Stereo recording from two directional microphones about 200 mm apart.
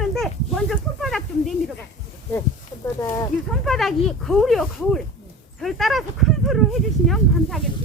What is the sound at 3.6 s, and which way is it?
Speech, centre (ahead or behind).